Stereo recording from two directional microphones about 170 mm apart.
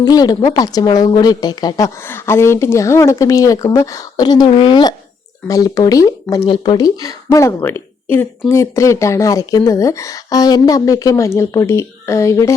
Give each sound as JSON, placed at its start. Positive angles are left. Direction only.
{"t": 0.0, "sound": "speech", "side_deg": 25}
{"t": 6.4, "sound": "speech", "side_deg": 30}